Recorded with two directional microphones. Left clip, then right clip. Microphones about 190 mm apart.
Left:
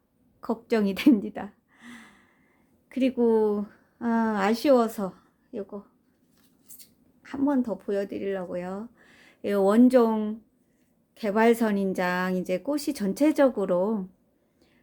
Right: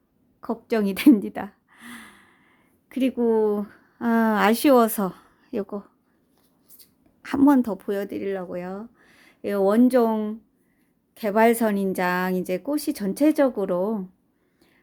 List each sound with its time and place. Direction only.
0.4 s a sound: 15° right (ahead or behind); by 2.4 s 30° right (ahead or behind)
2.9 s speech: 25° right (ahead or behind); by 5.2 s 45° right (ahead or behind)
5.5 s speech: 60° right (ahead or behind)
7.2 s a woman's voice: 65° right (ahead or behind); by 14.0 s 15° right (ahead or behind)